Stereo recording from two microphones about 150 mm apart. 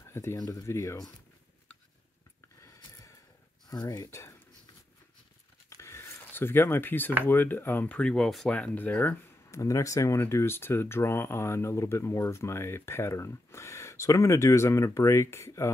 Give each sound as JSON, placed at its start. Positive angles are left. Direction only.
{"t": 0.1, "sound": "speech", "side_deg": 15}
{"t": 2.6, "sound": "a sound", "side_deg": 20}
{"t": 3.7, "sound": "speech", "side_deg": 25}
{"t": 5.7, "sound": "speech", "side_deg": 20}